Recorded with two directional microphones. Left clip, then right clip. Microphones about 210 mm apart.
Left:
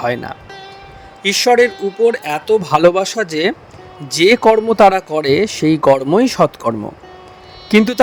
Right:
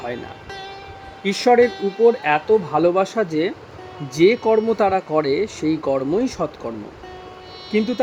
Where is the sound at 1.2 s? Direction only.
30° left (ahead or behind).